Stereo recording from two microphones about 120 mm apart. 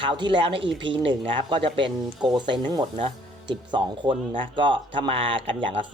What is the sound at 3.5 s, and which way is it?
Speech, 40° right (ahead or behind).